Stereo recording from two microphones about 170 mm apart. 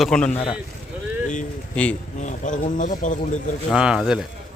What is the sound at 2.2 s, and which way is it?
Speech, 50° left (ahead or behind).